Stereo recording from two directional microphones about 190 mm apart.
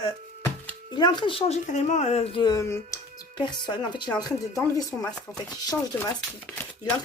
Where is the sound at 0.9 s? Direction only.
25° left (ahead or behind).